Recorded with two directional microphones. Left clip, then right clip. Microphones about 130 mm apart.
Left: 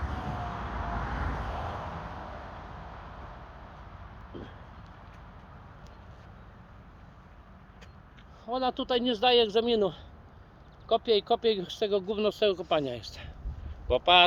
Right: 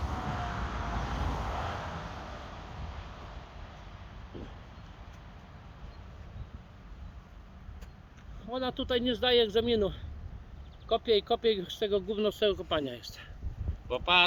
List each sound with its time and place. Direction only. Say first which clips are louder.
0.0 s vehicle: even; 5° right (ahead or behind)
0.3 s vehicle: even; 30° right (ahead or behind)
0.9 s vehicle: left 1 dB; 5° right (ahead or behind)
1.6 s vehicle: even; 35° right (ahead or behind)
4.3 s a sound: left 2 dB; 5° left (ahead or behind)
8.4 s speech: left 4 dB; 20° right (ahead or behind)
13.8 s speech: left 4 dB; 45° right (ahead or behind)